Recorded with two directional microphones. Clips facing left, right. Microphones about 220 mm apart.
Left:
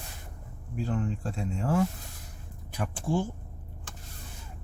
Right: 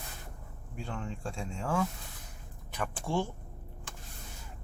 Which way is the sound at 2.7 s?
5° left (ahead or behind).